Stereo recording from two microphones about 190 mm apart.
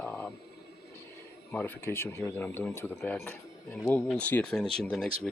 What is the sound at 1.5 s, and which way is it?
Speech, 10° left (ahead or behind).